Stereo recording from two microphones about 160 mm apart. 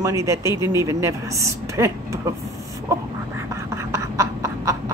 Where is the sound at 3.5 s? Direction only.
20° right (ahead or behind).